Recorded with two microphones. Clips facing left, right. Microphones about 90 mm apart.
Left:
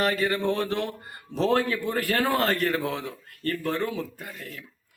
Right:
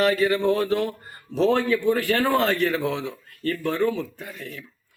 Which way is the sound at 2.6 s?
40° left (ahead or behind).